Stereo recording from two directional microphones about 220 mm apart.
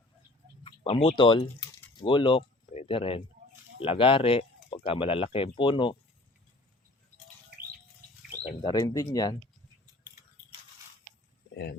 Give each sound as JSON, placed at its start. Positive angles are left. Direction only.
{"t": 0.6, "sound": "speech", "side_deg": 25}
{"t": 8.7, "sound": "speech", "side_deg": 15}
{"t": 11.5, "sound": "speech", "side_deg": 50}